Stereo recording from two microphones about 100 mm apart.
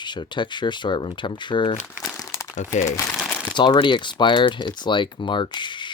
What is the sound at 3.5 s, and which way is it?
Speech, 50° left (ahead or behind).